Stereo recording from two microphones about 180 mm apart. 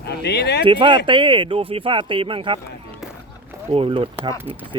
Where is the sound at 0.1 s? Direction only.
65° left (ahead or behind).